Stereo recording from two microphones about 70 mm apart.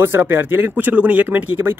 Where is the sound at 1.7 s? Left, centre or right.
Right.